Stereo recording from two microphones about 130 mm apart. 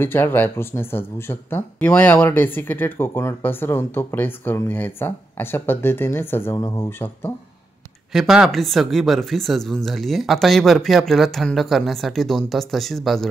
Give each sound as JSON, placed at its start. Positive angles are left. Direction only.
{"t": 0.0, "sound": "speech", "side_deg": 15}
{"t": 8.1, "sound": "speech", "side_deg": -5}